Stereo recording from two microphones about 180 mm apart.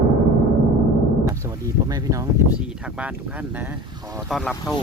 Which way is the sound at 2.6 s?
5° right (ahead or behind).